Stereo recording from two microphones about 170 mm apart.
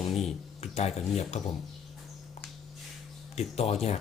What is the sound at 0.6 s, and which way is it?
Speech, 40° left (ahead or behind).